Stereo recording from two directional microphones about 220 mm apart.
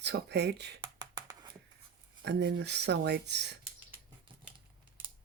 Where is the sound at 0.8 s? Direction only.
20° right (ahead or behind).